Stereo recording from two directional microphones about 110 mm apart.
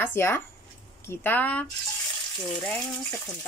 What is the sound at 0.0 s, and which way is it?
Speech, 20° left (ahead or behind).